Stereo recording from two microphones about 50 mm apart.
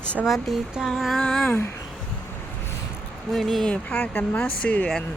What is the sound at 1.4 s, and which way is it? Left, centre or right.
Speech, left.